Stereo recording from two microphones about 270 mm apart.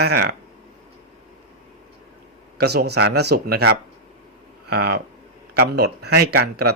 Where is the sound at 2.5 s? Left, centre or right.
Right.